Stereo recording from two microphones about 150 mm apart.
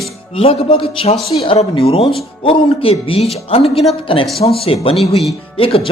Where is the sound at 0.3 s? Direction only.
40° left (ahead or behind).